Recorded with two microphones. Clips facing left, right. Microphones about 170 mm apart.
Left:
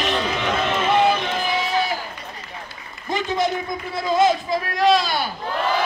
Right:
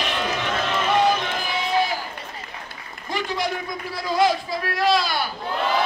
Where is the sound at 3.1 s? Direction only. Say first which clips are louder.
Left 4 dB; 20° left (ahead or behind).